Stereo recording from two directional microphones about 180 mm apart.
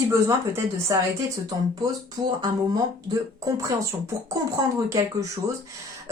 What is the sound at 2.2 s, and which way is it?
Speech, 20° right (ahead or behind).